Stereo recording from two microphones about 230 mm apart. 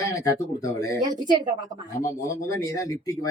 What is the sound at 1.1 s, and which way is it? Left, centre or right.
Speech, centre.